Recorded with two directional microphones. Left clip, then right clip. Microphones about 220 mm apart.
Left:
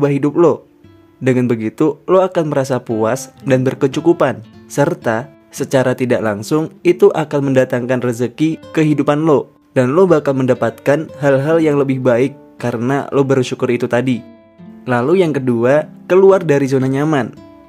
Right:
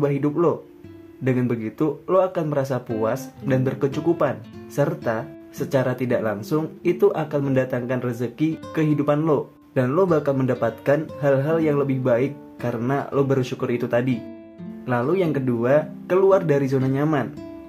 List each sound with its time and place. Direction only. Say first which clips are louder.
0.0 s speech: left 8 dB; 40° left (ahead or behind)